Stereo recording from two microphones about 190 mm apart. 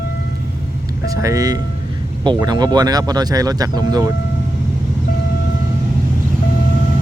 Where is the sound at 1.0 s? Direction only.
15° right (ahead or behind).